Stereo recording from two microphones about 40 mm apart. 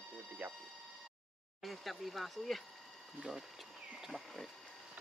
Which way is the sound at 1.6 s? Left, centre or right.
Centre.